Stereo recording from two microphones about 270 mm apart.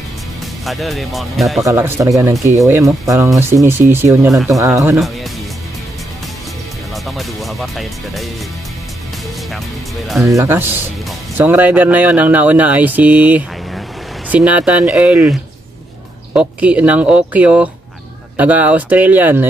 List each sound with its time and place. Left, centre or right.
0.7 s speech: centre
7.1 s speech: centre
10.0 s speech: centre
16.3 s speech: centre